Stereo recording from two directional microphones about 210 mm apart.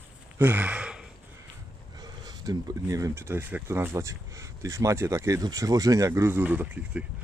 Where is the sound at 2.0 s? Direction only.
20° right (ahead or behind).